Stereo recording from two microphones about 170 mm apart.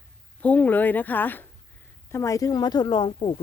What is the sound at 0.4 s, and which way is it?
Speech, 10° left (ahead or behind).